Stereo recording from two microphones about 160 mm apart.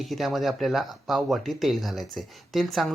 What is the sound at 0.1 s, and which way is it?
Speech, centre (ahead or behind).